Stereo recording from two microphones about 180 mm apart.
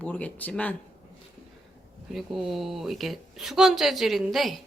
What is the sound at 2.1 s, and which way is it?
Speech, centre (ahead or behind).